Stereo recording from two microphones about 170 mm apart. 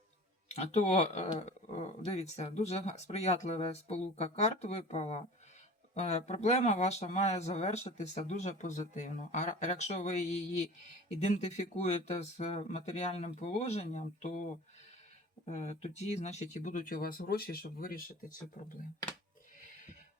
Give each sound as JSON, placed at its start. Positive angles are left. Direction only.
{"t": 0.5, "sound": "speech", "side_deg": 40}
{"t": 11.2, "sound": "speech", "side_deg": 40}
{"t": 15.4, "sound": "speech", "side_deg": 40}